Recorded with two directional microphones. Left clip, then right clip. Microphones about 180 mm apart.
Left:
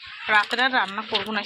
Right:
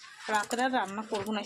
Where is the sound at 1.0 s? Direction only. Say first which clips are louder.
Left 8 dB; centre (ahead or behind).